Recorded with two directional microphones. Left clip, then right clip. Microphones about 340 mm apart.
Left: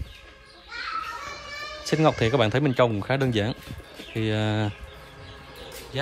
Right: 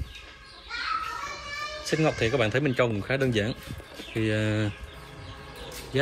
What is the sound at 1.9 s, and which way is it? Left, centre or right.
Speech, centre.